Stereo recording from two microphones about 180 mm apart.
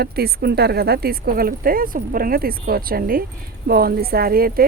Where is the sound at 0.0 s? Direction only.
60° right (ahead or behind).